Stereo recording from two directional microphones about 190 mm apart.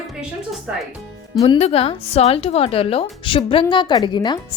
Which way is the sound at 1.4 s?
35° left (ahead or behind).